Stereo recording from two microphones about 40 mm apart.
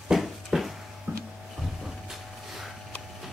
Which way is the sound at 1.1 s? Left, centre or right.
Right.